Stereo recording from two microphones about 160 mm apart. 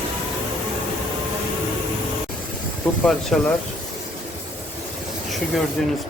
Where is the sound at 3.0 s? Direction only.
Centre (ahead or behind).